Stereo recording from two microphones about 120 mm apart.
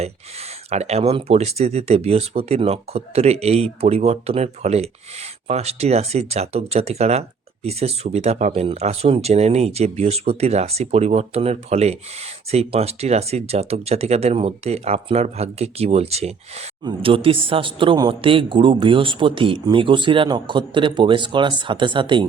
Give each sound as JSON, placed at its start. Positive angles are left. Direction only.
{"t": 0.7, "sound": "speech", "side_deg": -60}
{"t": 16.8, "sound": "speech", "side_deg": -50}